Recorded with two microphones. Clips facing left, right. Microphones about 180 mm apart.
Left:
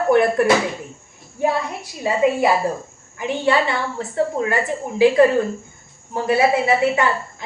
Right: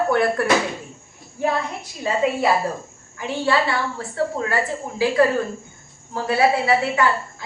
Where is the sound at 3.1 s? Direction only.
20° left (ahead or behind).